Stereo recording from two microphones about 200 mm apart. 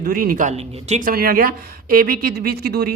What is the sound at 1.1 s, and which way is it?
Speech, 50° right (ahead or behind).